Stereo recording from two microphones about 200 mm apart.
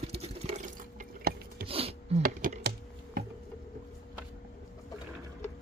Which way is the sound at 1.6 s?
30° right (ahead or behind).